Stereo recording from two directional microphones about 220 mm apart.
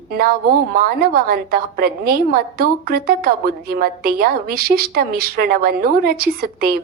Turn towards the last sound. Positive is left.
turn(degrees=-45)  # may be behind; listen again after turning